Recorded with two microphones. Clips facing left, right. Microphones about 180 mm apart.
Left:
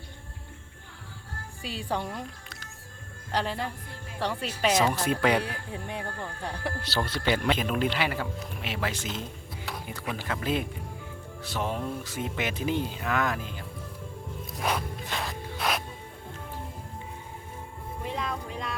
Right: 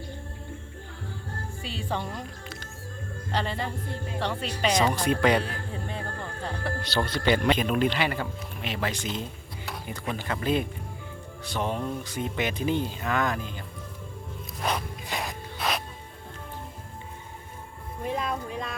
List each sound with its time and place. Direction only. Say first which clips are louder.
1.6 s speech: left 1 dB; 10° left (ahead or behind)
3.8 s speech: right 8 dB; 25° right (ahead or behind)
4.2 s speech: left 1 dB; 10° left (ahead or behind)
14.6 s music: even; 5° left (ahead or behind)
15.0 s music: right 1 dB; 15° right (ahead or behind)
15.5 s music: even; centre (ahead or behind)